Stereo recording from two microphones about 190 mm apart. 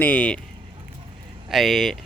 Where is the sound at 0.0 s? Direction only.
10° left (ahead or behind).